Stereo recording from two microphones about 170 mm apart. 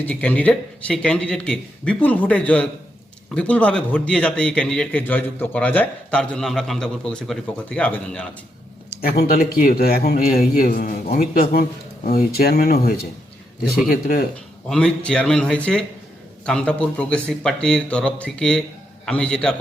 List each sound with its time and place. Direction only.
0.0 s a man's voice: 10° left (ahead or behind)
9.0 s a man's voice: 65° left (ahead or behind)
14.7 s a man's voice: 5° left (ahead or behind)